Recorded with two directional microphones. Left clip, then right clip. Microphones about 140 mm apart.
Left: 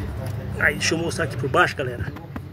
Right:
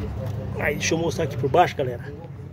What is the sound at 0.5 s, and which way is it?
Speech, 25° right (ahead or behind).